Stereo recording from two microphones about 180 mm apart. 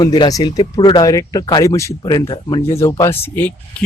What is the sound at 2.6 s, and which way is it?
Speech, 15° left (ahead or behind).